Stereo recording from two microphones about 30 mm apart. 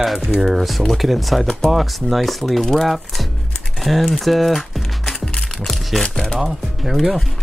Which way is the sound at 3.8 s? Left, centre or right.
Centre.